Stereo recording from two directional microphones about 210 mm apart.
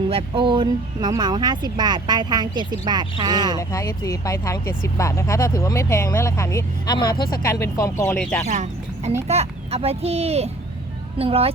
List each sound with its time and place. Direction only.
0.1 s speech: 25° right (ahead or behind)
3.6 s speech: 15° left (ahead or behind)
8.4 s speech: 35° right (ahead or behind)